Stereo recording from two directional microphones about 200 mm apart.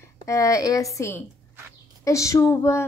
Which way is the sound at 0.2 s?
15° left (ahead or behind).